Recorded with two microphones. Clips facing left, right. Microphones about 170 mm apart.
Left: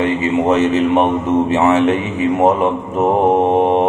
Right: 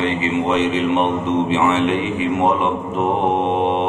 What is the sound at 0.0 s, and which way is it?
A man's voice, 45° left (ahead or behind).